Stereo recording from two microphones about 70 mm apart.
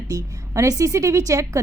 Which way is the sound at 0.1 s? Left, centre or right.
Right.